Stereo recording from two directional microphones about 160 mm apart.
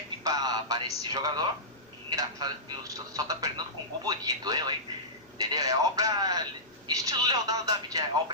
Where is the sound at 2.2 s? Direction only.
20° right (ahead or behind).